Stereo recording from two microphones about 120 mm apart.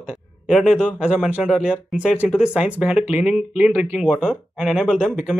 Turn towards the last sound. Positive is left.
turn(degrees=0)  # may be behind; listen again after turning